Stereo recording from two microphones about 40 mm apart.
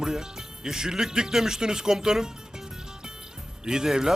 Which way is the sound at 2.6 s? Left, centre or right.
Centre.